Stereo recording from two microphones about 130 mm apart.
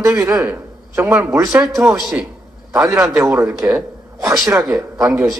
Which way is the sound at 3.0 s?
20° right (ahead or behind).